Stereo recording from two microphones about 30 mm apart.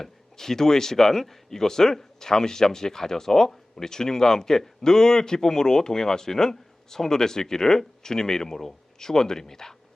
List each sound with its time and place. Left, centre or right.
0.0 s speech: centre